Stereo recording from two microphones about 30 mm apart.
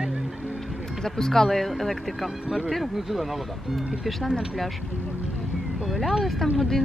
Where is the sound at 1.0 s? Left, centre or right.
Centre.